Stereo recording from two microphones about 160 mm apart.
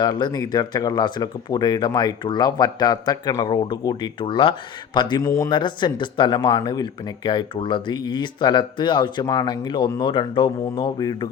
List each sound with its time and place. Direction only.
0.0 s speech: 25° left (ahead or behind)
5.2 s speech: 20° left (ahead or behind)
5.5 s speech: 30° left (ahead or behind)